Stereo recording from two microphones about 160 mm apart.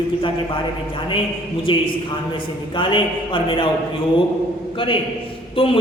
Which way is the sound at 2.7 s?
30° left (ahead or behind).